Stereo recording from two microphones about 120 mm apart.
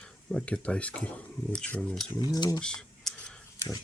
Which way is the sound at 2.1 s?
35° left (ahead or behind).